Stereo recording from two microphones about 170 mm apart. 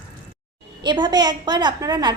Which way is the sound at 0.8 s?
25° right (ahead or behind).